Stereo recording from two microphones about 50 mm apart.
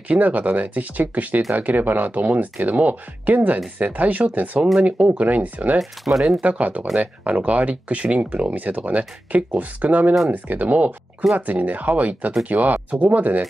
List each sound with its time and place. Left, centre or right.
0.1 s speech: right
5.8 s speech: centre
6.4 s speech: right